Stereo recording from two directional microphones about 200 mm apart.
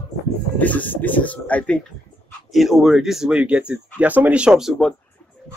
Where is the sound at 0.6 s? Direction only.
10° left (ahead or behind).